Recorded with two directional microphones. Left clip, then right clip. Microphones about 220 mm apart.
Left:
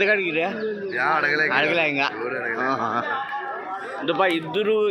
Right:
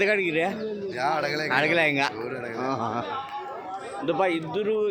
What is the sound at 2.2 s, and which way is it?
Speech, 50° right (ahead or behind).